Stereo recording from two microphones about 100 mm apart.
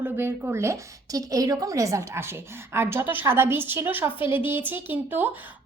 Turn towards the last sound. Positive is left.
turn(degrees=-20)  # may be behind; listen again after turning